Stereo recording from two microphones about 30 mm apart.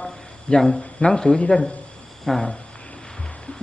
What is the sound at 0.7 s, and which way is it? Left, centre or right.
Speech, left.